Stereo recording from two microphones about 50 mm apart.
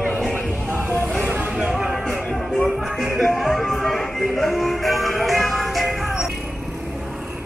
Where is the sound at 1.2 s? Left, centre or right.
Right.